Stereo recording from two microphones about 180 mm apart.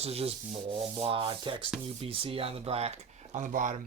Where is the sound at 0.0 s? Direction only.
35° right (ahead or behind).